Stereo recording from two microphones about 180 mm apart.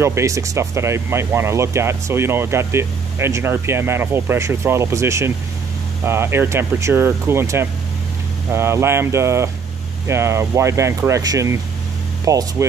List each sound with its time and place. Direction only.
0.0 s speech: 15° right (ahead or behind)